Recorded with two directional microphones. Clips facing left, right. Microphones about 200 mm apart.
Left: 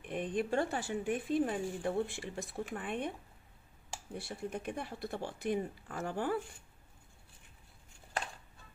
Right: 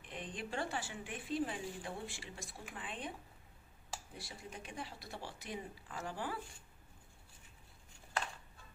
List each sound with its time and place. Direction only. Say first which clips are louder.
0.0 s speech: left 11 dB; 55° left (ahead or behind)
4.2 s speech: left 10 dB; 60° left (ahead or behind)